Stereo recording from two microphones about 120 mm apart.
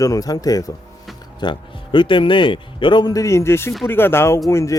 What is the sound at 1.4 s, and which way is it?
A man's voice, 40° left (ahead or behind).